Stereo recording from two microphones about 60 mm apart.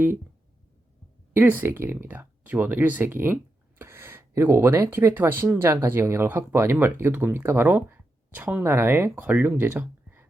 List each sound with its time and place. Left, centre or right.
1.3 s speech: right
4.9 s speech: right
8.4 s speech: right
8.6 s speech: right
9.2 s speech: right